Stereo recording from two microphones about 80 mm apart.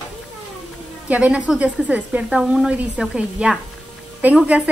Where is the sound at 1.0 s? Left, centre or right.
Centre.